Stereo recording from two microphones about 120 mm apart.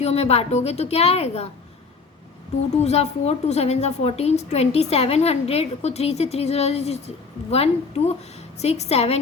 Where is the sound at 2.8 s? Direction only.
65° left (ahead or behind).